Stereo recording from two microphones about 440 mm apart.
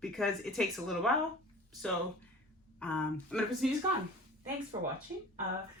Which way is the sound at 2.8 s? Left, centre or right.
Centre.